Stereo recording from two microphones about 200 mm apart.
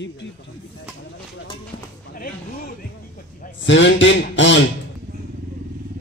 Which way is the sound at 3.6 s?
65° left (ahead or behind).